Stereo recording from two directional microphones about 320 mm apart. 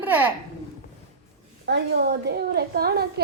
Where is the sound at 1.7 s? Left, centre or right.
Right.